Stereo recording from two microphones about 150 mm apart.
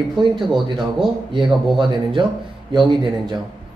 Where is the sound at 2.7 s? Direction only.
30° right (ahead or behind).